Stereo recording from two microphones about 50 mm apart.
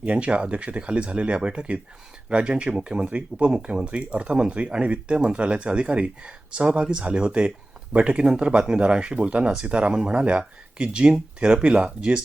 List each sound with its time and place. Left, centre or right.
0.0 s speech: right